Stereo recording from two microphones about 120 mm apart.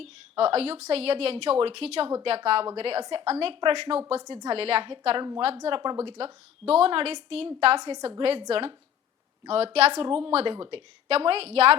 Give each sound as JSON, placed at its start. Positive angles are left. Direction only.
{"t": 0.0, "sound": "a woman's voice", "side_deg": -60}
{"t": 4.2, "sound": "a woman's voice", "side_deg": -30}
{"t": 4.4, "sound": "a woman's voice", "side_deg": -60}
{"t": 6.1, "sound": "a woman's voice", "side_deg": -55}